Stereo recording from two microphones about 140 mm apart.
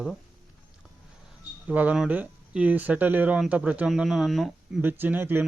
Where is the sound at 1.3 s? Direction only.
10° right (ahead or behind).